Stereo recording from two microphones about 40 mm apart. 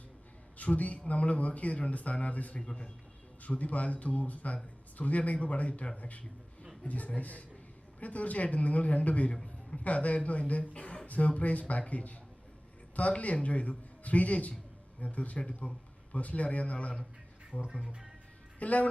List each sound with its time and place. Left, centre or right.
0.5 s speech: left
2.6 s a man's voice: left
3.4 s speech: left